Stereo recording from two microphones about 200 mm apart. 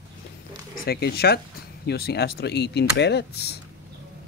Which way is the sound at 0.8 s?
55° left (ahead or behind).